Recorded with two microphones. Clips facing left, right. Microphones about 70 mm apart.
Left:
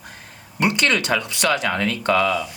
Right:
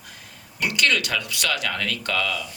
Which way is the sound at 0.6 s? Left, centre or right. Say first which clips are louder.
Left 3 dB; left.